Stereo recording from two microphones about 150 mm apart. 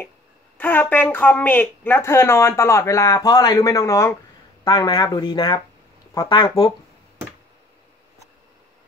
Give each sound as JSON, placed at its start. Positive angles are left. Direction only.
{"t": 0.6, "sound": "a woman's voice", "side_deg": 10}